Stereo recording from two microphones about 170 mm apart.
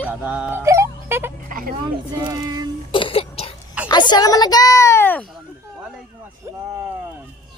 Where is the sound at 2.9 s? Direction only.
30° left (ahead or behind).